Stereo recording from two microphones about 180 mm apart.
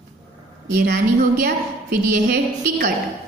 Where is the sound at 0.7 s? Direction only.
55° right (ahead or behind).